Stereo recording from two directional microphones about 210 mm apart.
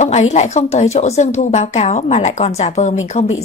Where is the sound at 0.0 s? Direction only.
35° left (ahead or behind).